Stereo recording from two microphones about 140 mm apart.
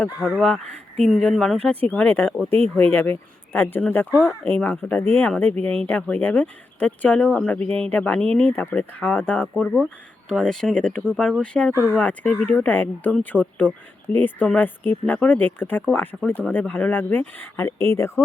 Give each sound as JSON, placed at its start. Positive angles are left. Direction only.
{"t": 0.3, "sound": "speech", "side_deg": 0}
{"t": 11.7, "sound": "speech", "side_deg": 20}